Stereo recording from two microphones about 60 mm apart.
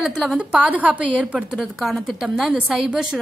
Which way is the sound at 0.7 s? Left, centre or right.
Right.